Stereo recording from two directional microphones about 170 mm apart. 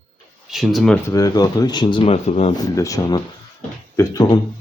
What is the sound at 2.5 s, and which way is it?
Speech, 20° left (ahead or behind).